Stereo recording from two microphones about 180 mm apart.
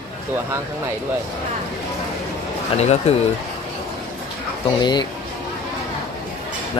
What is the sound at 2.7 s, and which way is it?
Speech, 35° left (ahead or behind).